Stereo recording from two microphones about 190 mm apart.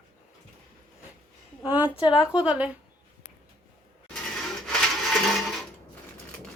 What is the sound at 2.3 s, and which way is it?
Speech, 5° right (ahead or behind).